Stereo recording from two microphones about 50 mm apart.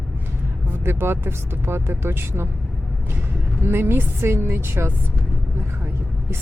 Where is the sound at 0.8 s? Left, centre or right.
Right.